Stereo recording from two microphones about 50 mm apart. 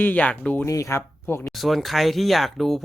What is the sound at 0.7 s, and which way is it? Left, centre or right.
Speech, left.